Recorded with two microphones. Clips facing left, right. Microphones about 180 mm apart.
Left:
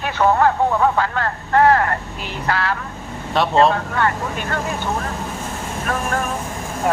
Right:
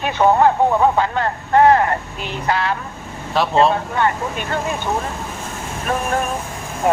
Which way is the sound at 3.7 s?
20° right (ahead or behind).